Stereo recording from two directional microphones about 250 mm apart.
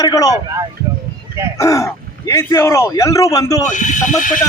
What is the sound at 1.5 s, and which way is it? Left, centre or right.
Speech, centre.